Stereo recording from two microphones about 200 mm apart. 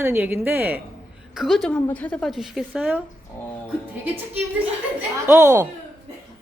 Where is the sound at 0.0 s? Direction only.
10° right (ahead or behind).